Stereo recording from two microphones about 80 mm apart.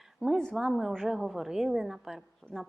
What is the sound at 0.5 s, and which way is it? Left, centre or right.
A woman's voice, centre.